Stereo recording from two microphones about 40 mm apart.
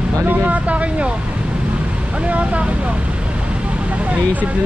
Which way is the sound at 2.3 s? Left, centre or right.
Right.